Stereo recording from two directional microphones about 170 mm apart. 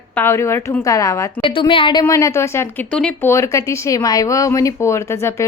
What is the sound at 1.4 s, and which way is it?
A woman's voice, 30° left (ahead or behind).